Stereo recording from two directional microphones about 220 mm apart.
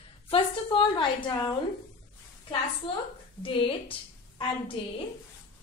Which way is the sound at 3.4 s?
25° left (ahead or behind).